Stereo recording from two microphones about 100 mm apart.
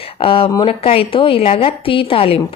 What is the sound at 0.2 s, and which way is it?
A woman's voice, 60° left (ahead or behind).